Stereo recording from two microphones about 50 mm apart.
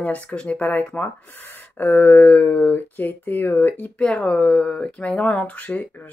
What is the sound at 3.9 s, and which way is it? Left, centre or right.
Speech, left.